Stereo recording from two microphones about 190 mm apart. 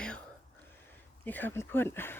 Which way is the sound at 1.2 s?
10° left (ahead or behind).